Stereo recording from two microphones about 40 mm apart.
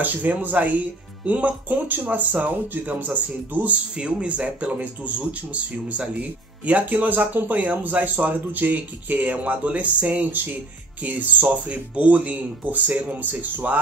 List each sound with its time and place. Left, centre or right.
0.0 s speech: right
3.9 s speech: right
4.6 s speech: right